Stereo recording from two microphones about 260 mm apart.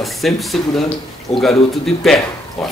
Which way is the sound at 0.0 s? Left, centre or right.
Centre.